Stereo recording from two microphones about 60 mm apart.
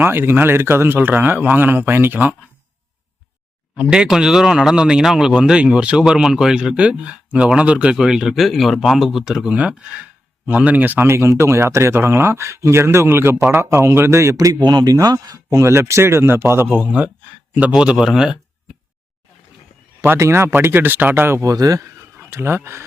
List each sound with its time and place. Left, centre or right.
0.0 s a man's voice: right
3.8 s speech: centre
7.9 s speech: centre; by 11.0 s right
11.0 s speech: right
14.3 s speech: right
15.6 s speech: right
16.7 s speech: right; by 18.3 s centre
20.1 s a man's voice: right
21.4 s speech: right
21.9 s a sound: right